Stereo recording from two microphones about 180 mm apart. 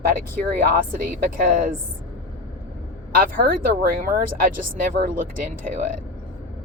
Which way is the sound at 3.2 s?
50° right (ahead or behind).